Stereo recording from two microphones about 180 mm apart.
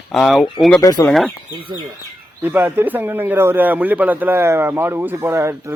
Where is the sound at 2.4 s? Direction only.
10° right (ahead or behind).